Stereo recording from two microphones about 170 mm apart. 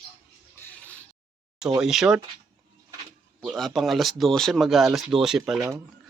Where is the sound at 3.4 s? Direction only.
Centre (ahead or behind).